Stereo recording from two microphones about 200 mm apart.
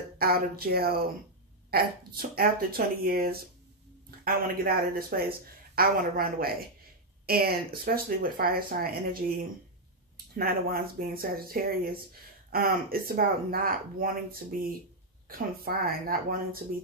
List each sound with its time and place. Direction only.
0.2 s speech: 50° right (ahead or behind)
10.3 s speech: 45° right (ahead or behind)